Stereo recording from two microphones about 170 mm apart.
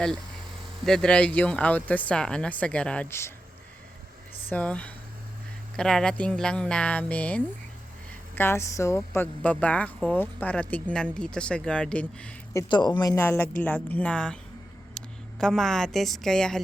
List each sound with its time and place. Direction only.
0.9 s speech: 5° left (ahead or behind)
4.4 s speech: 10° left (ahead or behind)
12.5 s a woman's voice: 25° left (ahead or behind); by 16.6 s 5° left (ahead or behind)